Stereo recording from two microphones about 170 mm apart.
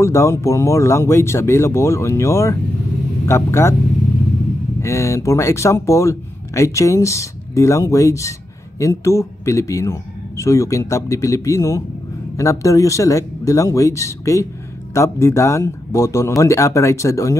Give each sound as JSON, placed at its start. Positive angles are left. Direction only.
{"t": 0.0, "sound": "speech", "side_deg": 15}
{"t": 4.8, "sound": "speech", "side_deg": 15}